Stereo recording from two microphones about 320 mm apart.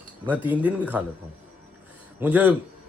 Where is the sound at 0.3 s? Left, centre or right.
Centre.